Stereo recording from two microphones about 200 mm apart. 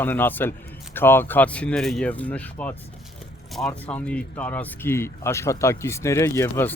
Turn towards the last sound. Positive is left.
turn(degrees=10)  # may be behind; listen again after turning